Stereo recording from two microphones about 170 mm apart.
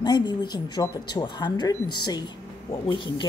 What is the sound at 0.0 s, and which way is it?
Speech, 25° left (ahead or behind).